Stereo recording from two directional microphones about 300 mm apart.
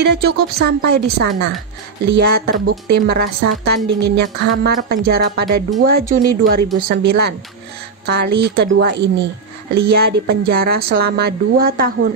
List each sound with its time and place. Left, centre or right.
0.0 s a woman's voice: right